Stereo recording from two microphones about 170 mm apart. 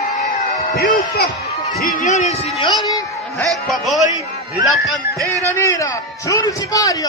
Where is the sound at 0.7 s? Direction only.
65° left (ahead or behind).